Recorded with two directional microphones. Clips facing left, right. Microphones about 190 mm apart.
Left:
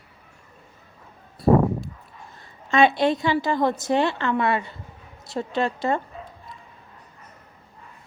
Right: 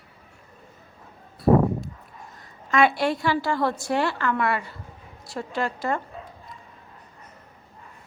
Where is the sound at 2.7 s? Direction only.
25° left (ahead or behind).